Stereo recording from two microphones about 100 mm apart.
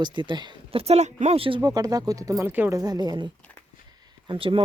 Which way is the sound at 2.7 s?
40° right (ahead or behind).